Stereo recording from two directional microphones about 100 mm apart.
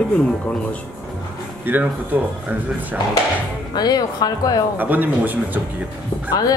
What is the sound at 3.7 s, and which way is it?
Speech, 45° left (ahead or behind).